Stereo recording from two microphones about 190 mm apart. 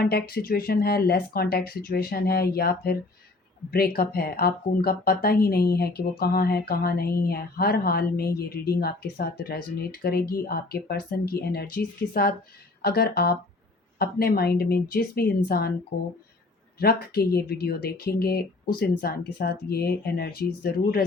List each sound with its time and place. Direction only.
0.0 s speech: 55° left (ahead or behind)
16.8 s speech: 55° left (ahead or behind)